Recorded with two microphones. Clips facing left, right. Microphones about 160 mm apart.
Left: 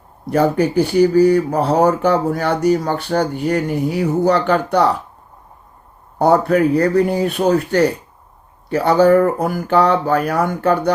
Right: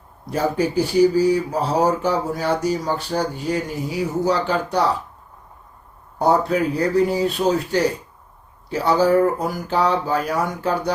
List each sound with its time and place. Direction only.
0.3 s speech: 60° left (ahead or behind)
6.1 s speech: 60° left (ahead or behind)